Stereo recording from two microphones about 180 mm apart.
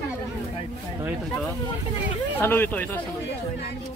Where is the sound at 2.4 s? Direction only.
10° left (ahead or behind).